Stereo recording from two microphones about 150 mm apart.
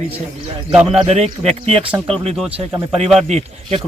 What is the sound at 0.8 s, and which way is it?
Speech, 45° right (ahead or behind).